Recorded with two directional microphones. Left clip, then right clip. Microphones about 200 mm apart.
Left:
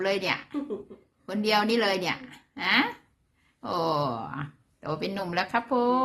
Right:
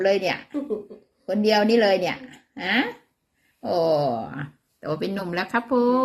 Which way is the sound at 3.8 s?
10° left (ahead or behind).